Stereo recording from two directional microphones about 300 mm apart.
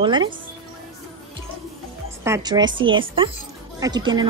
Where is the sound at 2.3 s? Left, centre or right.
Centre.